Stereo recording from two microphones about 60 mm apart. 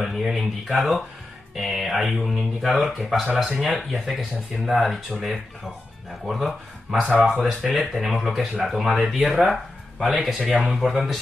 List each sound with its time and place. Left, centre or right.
0.0 s speech: centre
7.0 s speech: right
7.7 s speech: centre